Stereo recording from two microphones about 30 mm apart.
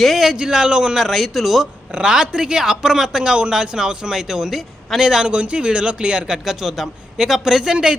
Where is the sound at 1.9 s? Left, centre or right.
Right.